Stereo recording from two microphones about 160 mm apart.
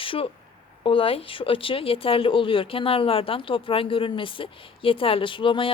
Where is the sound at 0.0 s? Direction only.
35° left (ahead or behind).